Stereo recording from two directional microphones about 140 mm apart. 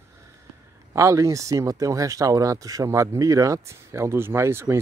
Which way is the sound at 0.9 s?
20° right (ahead or behind).